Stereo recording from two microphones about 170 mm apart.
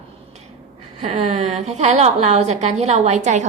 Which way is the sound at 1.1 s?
40° right (ahead or behind).